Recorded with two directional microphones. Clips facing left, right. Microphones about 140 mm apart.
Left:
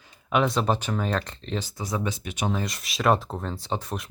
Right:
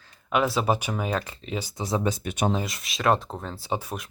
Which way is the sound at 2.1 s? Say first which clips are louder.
Right 4 dB; 50° right (ahead or behind).